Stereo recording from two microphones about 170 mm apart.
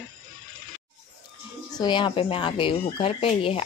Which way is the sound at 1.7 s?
25° left (ahead or behind).